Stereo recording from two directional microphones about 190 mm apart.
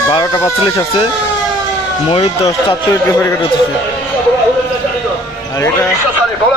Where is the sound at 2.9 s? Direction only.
15° left (ahead or behind).